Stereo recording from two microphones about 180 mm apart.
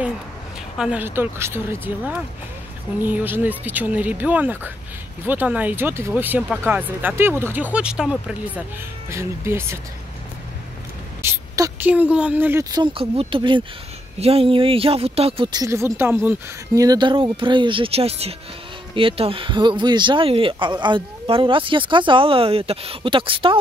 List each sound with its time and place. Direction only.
0.7 s speech: 5° right (ahead or behind)
11.2 s a sound: 15° right (ahead or behind)
11.9 s speech: 5° right (ahead or behind)
12.7 s speech: 30° right (ahead or behind)